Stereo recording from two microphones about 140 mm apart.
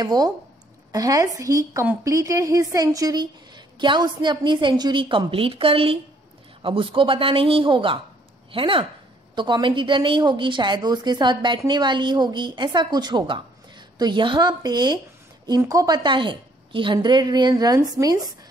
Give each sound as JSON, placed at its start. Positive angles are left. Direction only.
{"t": 0.0, "sound": "a woman's voice", "side_deg": -30}